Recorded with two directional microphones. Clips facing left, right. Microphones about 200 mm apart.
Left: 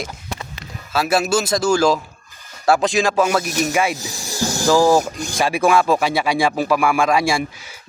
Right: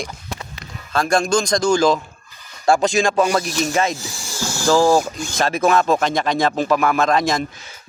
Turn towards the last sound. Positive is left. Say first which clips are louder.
# even
turn(degrees=10)  # may be behind; listen again after turning